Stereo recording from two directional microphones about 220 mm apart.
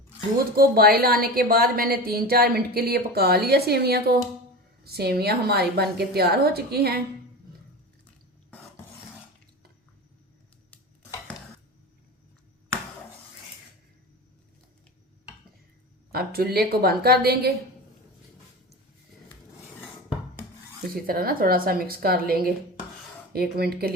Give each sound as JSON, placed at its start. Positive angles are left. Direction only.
{"t": 0.3, "sound": "a woman's voice", "side_deg": -40}
{"t": 16.1, "sound": "a woman's voice", "side_deg": -45}
{"t": 20.9, "sound": "a woman's voice", "side_deg": -45}